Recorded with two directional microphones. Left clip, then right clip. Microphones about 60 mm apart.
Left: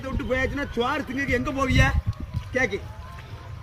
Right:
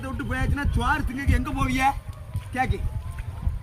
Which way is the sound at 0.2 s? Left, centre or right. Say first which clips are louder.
Left 5 dB; right.